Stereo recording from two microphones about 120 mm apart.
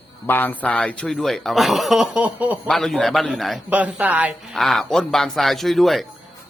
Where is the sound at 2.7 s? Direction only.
5° left (ahead or behind).